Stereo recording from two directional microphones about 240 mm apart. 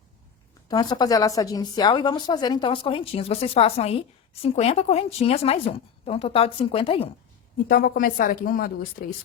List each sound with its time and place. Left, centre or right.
0.7 s a woman's voice: centre
7.7 s a woman's voice: left